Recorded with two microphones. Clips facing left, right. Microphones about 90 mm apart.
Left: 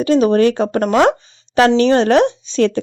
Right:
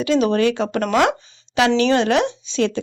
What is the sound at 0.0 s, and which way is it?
Speech, 40° left (ahead or behind).